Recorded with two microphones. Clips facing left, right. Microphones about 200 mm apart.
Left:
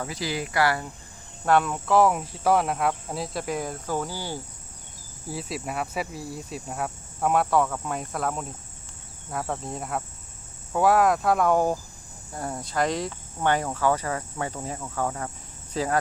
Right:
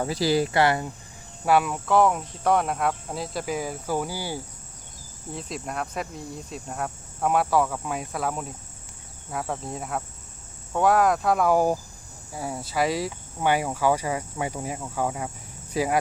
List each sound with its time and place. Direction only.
0.0 s speech: 35° right (ahead or behind)
1.5 s speech: 5° right (ahead or behind)
5.3 s speech: 5° left (ahead or behind); by 16.0 s 10° right (ahead or behind)